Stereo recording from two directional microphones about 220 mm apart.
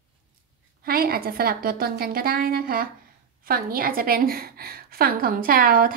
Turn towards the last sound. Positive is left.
turn(degrees=-40)  # may be behind; listen again after turning